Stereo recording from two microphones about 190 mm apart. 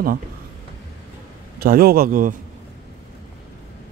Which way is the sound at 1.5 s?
50° right (ahead or behind).